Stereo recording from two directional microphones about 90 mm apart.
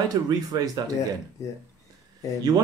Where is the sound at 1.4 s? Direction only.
30° left (ahead or behind).